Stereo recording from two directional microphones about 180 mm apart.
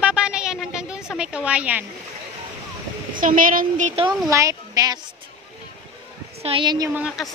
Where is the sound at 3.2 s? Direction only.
50° right (ahead or behind).